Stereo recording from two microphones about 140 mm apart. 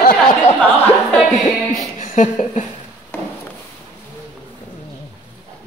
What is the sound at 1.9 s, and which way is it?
Speech, 65° left (ahead or behind).